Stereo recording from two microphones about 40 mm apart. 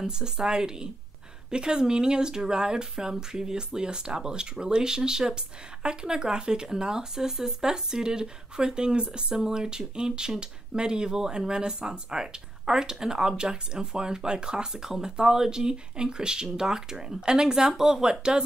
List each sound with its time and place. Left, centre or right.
0.0 s speech: centre